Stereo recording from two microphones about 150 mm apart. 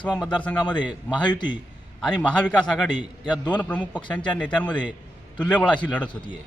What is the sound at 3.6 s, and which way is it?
A man's voice, 10° left (ahead or behind).